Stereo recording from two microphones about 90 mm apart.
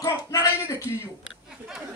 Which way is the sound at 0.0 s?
40° left (ahead or behind).